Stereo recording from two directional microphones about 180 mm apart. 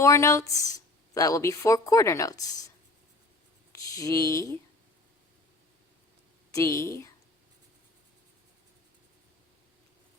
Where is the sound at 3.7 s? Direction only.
20° left (ahead or behind).